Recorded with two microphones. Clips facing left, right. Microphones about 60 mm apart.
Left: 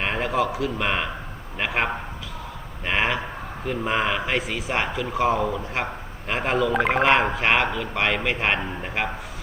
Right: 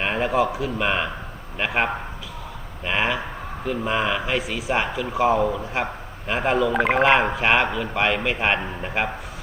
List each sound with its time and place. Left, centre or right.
0.0 s a sound: centre
0.3 s a man's voice: right
0.8 s speech: centre